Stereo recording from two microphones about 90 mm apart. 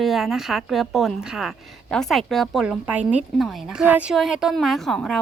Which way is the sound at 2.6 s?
15° right (ahead or behind).